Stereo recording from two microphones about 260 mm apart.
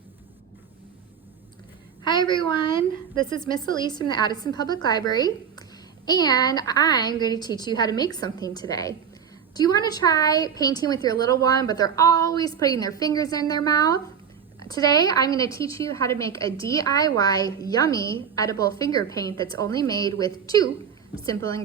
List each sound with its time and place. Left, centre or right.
2.0 s a woman's voice: centre